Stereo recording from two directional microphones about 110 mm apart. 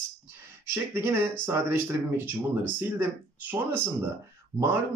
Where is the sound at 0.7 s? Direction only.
20° right (ahead or behind).